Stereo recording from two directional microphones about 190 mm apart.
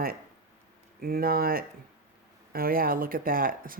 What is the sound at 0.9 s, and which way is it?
Speech, 50° right (ahead or behind).